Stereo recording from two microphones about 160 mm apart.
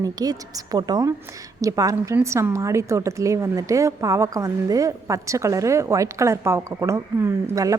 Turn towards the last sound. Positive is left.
turn(degrees=-20)  # may be behind; listen again after turning